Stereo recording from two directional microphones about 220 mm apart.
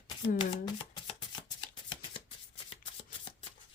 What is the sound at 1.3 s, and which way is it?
Shuffling cards, 20° left (ahead or behind).